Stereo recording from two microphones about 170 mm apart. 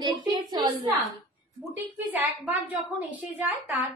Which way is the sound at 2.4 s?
10° right (ahead or behind).